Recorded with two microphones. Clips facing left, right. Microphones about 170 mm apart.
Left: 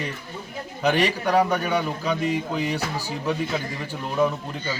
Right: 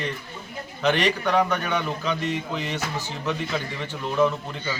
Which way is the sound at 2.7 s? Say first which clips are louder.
Left 2 dB; 35° left (ahead or behind).